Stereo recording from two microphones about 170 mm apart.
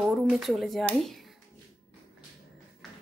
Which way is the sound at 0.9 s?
Centre (ahead or behind).